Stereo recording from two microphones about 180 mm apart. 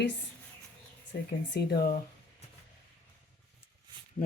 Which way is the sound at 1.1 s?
60° left (ahead or behind).